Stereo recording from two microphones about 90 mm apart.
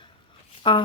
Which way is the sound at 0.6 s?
70° left (ahead or behind).